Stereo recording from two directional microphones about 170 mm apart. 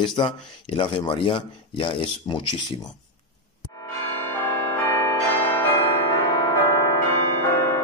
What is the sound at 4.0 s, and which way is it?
Change ringing, 15° left (ahead or behind).